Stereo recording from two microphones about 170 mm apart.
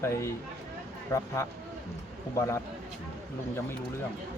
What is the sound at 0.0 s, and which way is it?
Speech, 15° left (ahead or behind).